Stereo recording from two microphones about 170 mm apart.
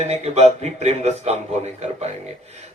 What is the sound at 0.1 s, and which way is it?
A man's voice, 40° right (ahead or behind).